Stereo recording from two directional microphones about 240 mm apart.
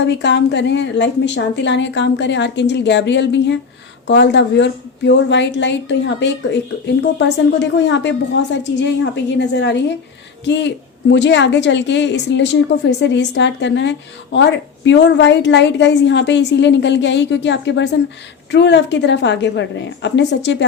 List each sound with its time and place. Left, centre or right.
0.0 s a woman's voice: left